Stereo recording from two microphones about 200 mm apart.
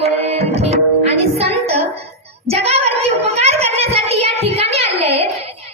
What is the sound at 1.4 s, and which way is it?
Music, 30° right (ahead or behind).